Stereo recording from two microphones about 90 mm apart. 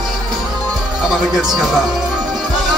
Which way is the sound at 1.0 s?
5° right (ahead or behind).